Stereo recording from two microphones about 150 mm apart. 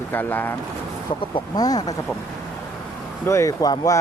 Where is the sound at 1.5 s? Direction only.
25° left (ahead or behind).